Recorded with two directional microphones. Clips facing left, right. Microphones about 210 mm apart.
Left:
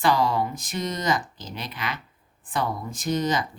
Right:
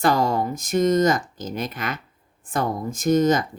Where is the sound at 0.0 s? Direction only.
45° right (ahead or behind).